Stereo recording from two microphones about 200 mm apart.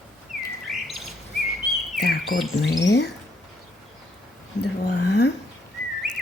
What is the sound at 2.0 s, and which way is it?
Bird, 50° left (ahead or behind).